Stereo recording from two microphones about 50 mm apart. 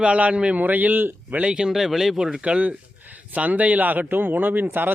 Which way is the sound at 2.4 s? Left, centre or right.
Right.